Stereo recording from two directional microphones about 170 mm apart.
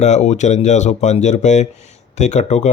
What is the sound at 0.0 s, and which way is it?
Speech, 40° left (ahead or behind).